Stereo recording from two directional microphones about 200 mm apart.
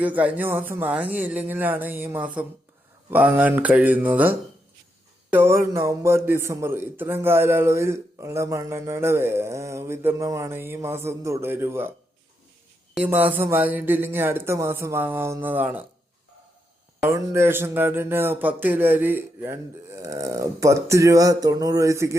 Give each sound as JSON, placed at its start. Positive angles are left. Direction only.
{"t": 0.0, "sound": "a man's voice", "side_deg": -5}
{"t": 12.9, "sound": "a man's voice", "side_deg": -5}
{"t": 17.1, "sound": "a man's voice", "side_deg": -15}